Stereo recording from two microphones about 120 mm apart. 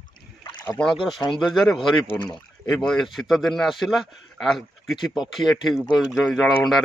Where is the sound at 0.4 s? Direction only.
35° left (ahead or behind).